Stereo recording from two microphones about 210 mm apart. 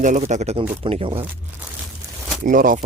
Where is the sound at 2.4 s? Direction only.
40° right (ahead or behind).